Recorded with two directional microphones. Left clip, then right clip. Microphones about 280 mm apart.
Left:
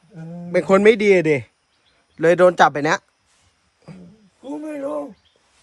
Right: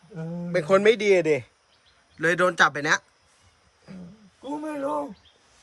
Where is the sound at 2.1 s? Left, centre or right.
Centre.